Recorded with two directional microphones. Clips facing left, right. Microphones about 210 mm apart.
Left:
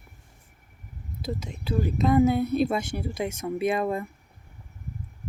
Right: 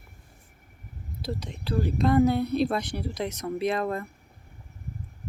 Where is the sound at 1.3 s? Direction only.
5° left (ahead or behind).